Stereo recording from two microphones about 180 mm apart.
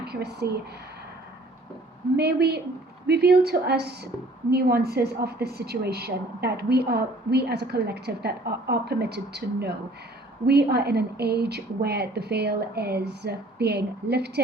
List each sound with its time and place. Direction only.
0.0 s speech: 65° right (ahead or behind)
2.1 s a woman's voice: 65° right (ahead or behind)